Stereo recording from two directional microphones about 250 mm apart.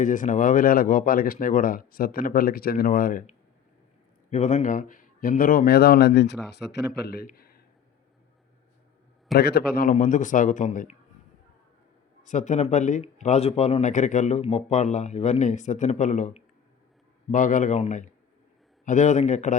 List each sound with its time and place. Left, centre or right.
0.0 s a man's voice: left
9.3 s speech: left
12.2 s speech: left